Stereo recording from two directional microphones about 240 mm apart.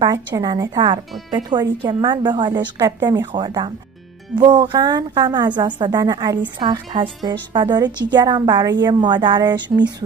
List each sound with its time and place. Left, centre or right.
0.0 s a woman's voice: centre